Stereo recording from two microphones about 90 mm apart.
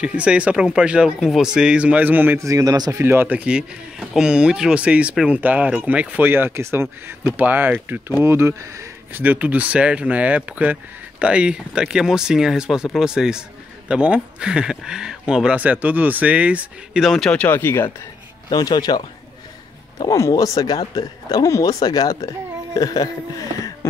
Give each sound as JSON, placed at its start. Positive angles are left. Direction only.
{"t": 0.0, "sound": "speech", "side_deg": -10}
{"t": 2.4, "sound": "speech", "side_deg": -40}
{"t": 3.0, "sound": "speech", "side_deg": -25}
{"t": 9.2, "sound": "speech", "side_deg": -20}
{"t": 17.3, "sound": "speech", "side_deg": 20}
{"t": 18.5, "sound": "speech", "side_deg": 50}
{"t": 20.1, "sound": "speech", "side_deg": 35}
{"t": 22.8, "sound": "a sound", "side_deg": 45}